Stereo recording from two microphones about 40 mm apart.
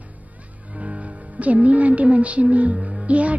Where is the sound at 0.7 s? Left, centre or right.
Right.